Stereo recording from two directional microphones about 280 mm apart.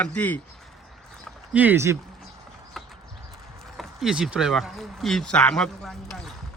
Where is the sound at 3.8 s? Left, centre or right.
Centre.